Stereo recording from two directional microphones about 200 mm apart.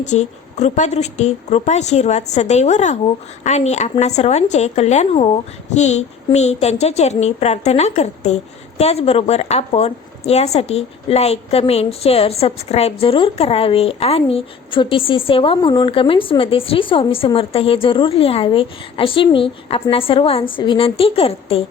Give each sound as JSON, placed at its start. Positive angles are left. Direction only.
{"t": 0.0, "sound": "a woman's voice", "side_deg": 35}